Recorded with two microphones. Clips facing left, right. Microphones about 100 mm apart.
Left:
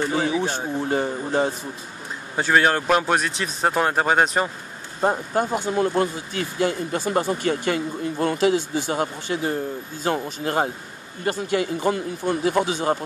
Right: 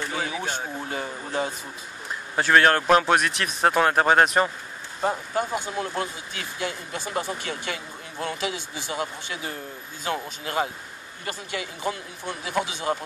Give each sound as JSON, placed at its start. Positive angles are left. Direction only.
{"t": 0.1, "sound": "speech", "side_deg": 30}
{"t": 2.3, "sound": "speech", "side_deg": 5}
{"t": 5.0, "sound": "speech", "side_deg": 40}